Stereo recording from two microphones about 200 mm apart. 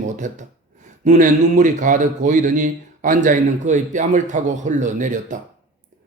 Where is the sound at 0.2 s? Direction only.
40° right (ahead or behind).